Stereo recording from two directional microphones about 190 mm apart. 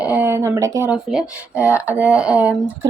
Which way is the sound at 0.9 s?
5° right (ahead or behind).